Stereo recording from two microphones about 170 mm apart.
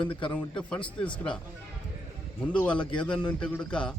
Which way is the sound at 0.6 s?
5° left (ahead or behind).